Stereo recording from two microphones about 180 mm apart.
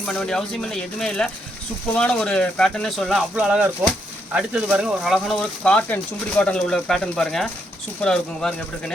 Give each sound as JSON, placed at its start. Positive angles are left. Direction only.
{"t": 0.1, "sound": "speech", "side_deg": 5}